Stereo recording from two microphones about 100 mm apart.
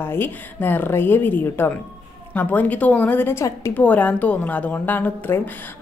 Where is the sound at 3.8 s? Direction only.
15° left (ahead or behind).